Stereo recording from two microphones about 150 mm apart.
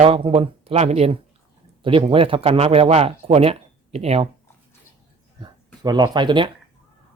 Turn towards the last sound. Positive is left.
turn(degrees=-30)  # may be behind; listen again after turning